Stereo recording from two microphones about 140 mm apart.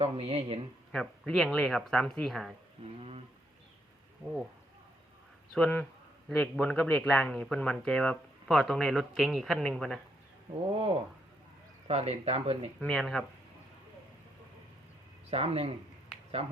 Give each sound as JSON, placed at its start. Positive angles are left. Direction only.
{"t": 0.0, "sound": "speech", "side_deg": -45}
{"t": 0.9, "sound": "speech", "side_deg": 5}
{"t": 2.8, "sound": "speech", "side_deg": -45}
{"t": 5.5, "sound": "speech", "side_deg": 5}
{"t": 10.7, "sound": "speech", "side_deg": -45}
{"t": 12.8, "sound": "speech", "side_deg": 0}
{"t": 15.3, "sound": "speech", "side_deg": -45}